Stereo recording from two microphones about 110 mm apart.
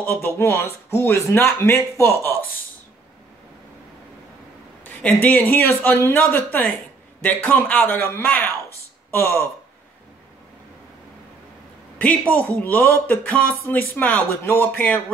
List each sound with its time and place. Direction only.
0.0 s a man's voice: 20° left (ahead or behind)
4.8 s a man's voice: 15° left (ahead or behind)
12.0 s speech: 15° left (ahead or behind)